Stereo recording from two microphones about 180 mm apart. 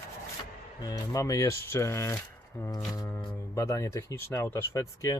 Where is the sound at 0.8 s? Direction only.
20° left (ahead or behind).